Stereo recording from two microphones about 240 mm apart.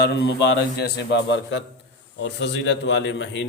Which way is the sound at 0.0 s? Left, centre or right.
Left.